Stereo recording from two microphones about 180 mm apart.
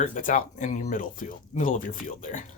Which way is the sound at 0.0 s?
45° left (ahead or behind).